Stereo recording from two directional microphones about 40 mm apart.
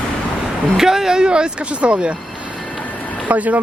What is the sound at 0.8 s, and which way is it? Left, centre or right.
A woman's voice, centre.